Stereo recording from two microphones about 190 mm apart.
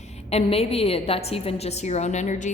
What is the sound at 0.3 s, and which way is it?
A woman's voice, 35° left (ahead or behind).